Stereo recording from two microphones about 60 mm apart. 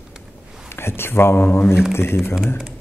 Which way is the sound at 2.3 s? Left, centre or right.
Centre.